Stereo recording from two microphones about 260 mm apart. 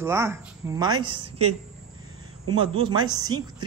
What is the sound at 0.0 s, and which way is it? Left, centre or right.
Speech, centre.